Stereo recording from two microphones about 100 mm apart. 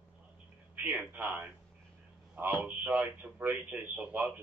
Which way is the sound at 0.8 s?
15° right (ahead or behind).